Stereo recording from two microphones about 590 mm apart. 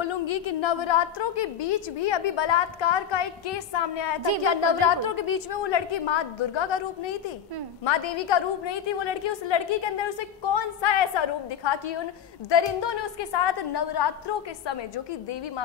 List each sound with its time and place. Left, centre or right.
0.0 s a woman's voice: left